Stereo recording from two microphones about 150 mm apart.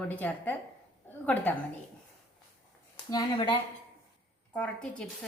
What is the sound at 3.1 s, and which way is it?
Speech, 35° left (ahead or behind).